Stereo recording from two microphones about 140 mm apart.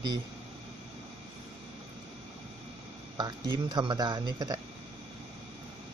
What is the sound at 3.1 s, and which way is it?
Speech, 30° right (ahead or behind).